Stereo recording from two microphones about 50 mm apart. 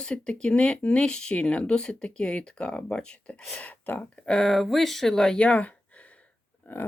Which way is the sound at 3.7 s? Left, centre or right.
Left.